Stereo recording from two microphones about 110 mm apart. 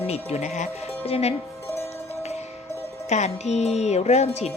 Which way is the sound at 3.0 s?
90° left.